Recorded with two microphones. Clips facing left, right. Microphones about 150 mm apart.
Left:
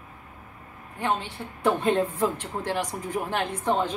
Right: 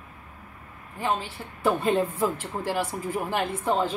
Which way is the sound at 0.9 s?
Centre (ahead or behind).